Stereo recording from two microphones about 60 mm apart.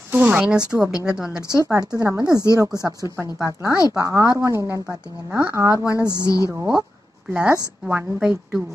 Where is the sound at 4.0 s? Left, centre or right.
Right.